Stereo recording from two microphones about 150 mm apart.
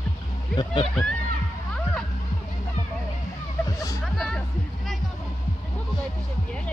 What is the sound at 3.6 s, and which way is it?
Music, 20° left (ahead or behind).